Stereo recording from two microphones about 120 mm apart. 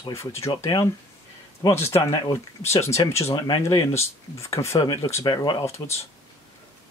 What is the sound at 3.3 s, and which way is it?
Speech, 40° left (ahead or behind).